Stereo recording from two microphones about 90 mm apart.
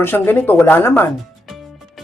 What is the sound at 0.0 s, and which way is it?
Speech, 25° left (ahead or behind).